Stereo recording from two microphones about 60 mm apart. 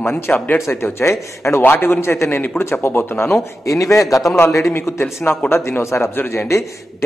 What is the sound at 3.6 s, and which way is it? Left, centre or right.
Speech, left.